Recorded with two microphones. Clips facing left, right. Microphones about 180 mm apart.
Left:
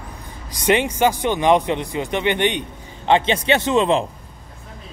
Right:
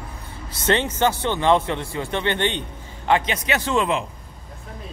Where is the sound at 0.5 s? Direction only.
15° left (ahead or behind).